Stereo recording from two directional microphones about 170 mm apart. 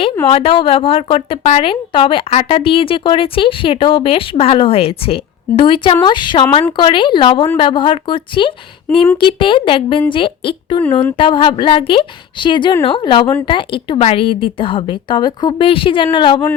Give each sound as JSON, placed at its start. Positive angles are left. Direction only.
{"t": 0.3, "sound": "a woman's voice", "side_deg": 35}